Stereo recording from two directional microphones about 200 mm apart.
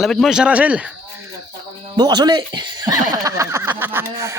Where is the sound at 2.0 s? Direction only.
20° right (ahead or behind).